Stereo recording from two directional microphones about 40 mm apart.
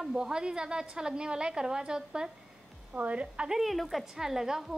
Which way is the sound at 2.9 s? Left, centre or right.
Right.